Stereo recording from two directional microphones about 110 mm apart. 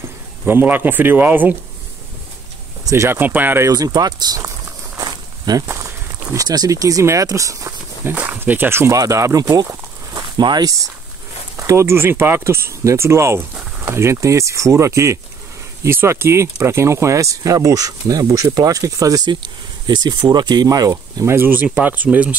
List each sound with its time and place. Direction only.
0.5 s speech: 20° right (ahead or behind)
2.8 s speech: 25° right (ahead or behind)
3.6 s speech: 35° right (ahead or behind)
4.9 s a sound: 35° right (ahead or behind)
5.7 s speech: 30° right (ahead or behind)
8.1 s speech: 15° right (ahead or behind); by 10.8 s 40° right (ahead or behind)
11.5 s speech: 25° right (ahead or behind)